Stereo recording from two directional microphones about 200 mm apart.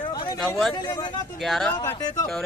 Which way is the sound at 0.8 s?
20° left (ahead or behind).